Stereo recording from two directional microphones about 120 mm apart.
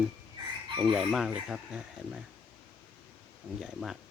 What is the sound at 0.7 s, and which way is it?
Chicken, 40° right (ahead or behind).